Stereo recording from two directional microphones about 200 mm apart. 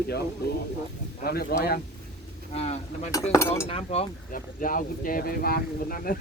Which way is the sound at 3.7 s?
30° left (ahead or behind).